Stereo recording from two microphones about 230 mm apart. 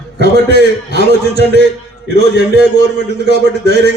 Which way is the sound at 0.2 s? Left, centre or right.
Left.